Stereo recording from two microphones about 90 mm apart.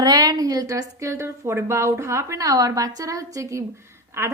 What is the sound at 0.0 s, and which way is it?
A woman's voice, 50° right (ahead or behind).